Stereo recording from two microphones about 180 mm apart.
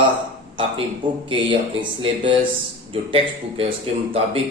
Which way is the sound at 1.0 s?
25° right (ahead or behind).